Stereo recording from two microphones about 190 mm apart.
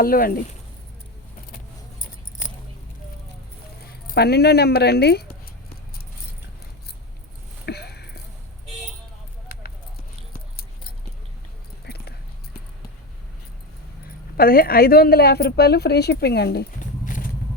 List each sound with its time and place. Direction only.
0.0 s speech: 50° left (ahead or behind)
4.0 s a woman's voice: 55° left (ahead or behind)
7.6 s a sound: 60° left (ahead or behind)
10.3 s keys jangling: 55° left (ahead or behind)
11.9 s a sound: 60° left (ahead or behind)
14.3 s a woman's voice: 50° left (ahead or behind)